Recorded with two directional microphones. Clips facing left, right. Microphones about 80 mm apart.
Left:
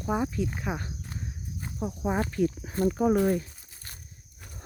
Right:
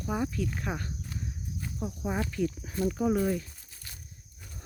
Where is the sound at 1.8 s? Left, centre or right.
Left.